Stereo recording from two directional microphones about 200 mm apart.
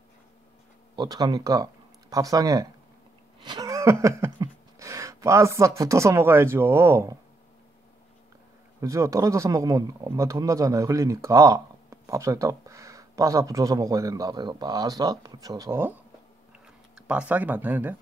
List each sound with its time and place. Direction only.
0.9 s speech: 20° right (ahead or behind)
8.8 s speech: 15° right (ahead or behind)